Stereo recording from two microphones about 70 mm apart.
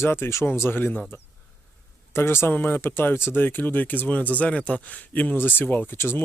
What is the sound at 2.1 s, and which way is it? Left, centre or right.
Speech, left.